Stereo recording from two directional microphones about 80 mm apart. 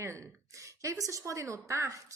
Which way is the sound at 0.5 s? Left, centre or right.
Right.